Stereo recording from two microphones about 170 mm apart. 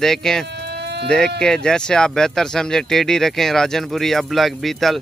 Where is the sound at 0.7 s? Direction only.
80° right.